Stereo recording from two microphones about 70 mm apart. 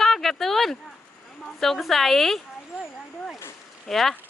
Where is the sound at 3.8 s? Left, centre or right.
Centre.